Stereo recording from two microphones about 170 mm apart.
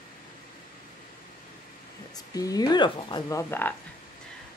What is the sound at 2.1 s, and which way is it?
Speech, 20° left (ahead or behind).